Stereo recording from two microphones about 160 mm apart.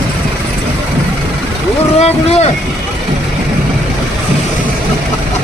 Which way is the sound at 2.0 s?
40° left (ahead or behind).